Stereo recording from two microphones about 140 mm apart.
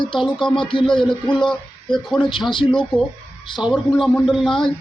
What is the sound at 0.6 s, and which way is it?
Speech, 35° left (ahead or behind).